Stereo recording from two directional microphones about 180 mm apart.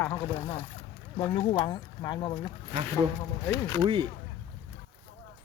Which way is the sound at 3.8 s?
30° right (ahead or behind).